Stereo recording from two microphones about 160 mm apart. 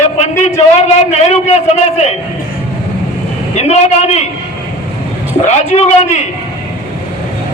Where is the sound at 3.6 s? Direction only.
45° left (ahead or behind).